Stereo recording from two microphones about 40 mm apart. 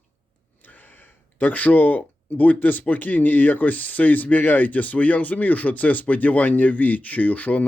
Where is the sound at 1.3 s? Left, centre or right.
Left.